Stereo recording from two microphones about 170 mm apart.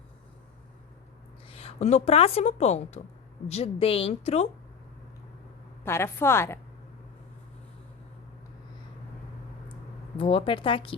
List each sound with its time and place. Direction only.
1.5 s speech: 35° left (ahead or behind)
5.8 s a woman's voice: 15° left (ahead or behind)
10.2 s speech: 35° left (ahead or behind)